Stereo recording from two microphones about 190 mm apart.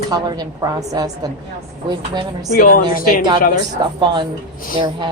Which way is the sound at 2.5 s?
45° left (ahead or behind).